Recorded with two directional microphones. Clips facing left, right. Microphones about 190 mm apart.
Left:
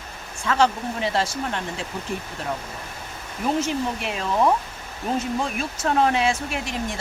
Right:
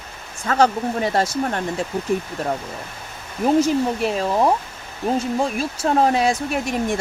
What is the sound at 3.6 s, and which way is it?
Speech, 35° right (ahead or behind).